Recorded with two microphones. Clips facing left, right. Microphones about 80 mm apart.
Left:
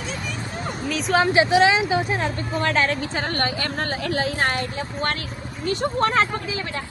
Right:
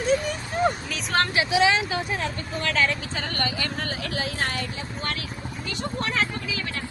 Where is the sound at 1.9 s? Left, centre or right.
Centre.